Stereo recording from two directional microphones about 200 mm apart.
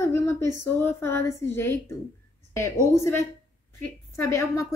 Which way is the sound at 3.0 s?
15° left (ahead or behind).